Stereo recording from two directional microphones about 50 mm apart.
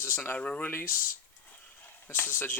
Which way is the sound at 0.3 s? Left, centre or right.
Left.